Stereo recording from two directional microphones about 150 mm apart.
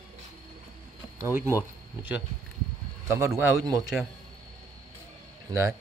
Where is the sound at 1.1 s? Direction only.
15° right (ahead or behind).